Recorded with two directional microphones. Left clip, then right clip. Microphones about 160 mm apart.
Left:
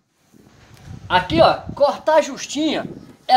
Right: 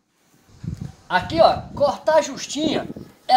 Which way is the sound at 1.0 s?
30° left (ahead or behind).